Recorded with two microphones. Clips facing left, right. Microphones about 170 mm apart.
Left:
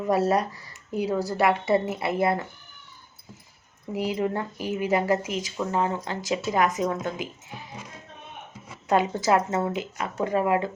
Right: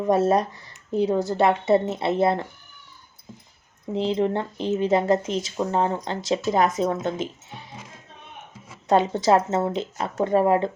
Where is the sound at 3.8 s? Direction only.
25° right (ahead or behind).